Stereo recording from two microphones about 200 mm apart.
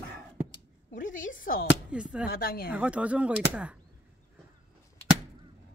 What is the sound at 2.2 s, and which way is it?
Speech, 50° left (ahead or behind).